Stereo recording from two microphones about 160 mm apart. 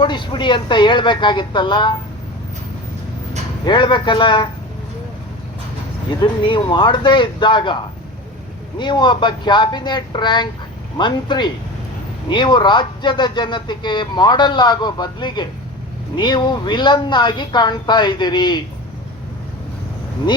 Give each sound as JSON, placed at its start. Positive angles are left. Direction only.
{"t": 0.0, "sound": "speech", "side_deg": 30}
{"t": 3.7, "sound": "speech", "side_deg": 30}
{"t": 6.1, "sound": "speech", "side_deg": 30}
{"t": 8.8, "sound": "speech", "side_deg": 30}